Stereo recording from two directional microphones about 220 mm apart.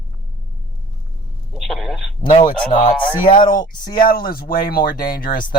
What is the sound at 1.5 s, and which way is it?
Speech, centre (ahead or behind).